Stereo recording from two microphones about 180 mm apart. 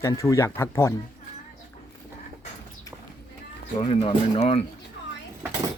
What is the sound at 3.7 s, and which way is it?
Speech, 30° left (ahead or behind).